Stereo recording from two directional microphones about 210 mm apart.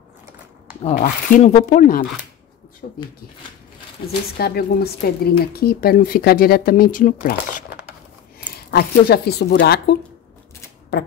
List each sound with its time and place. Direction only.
0.8 s speech: 40° left (ahead or behind)
2.8 s a sound: 45° left (ahead or behind)
4.4 s a woman's voice: 50° left (ahead or behind)
8.7 s a woman's voice: 50° left (ahead or behind)